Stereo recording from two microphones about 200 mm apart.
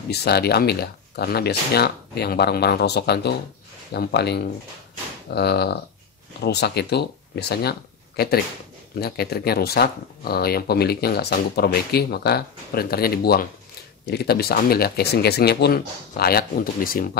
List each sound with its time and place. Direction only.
0.1 s speech: 55° left (ahead or behind)
9.0 s speech: 50° left (ahead or behind)